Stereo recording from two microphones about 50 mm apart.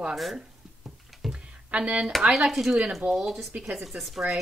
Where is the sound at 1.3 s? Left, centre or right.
Right.